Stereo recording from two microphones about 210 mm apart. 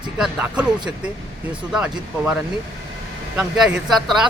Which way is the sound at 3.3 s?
Centre (ahead or behind).